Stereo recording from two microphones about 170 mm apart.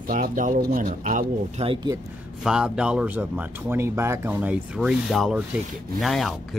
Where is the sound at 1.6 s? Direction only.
25° right (ahead or behind).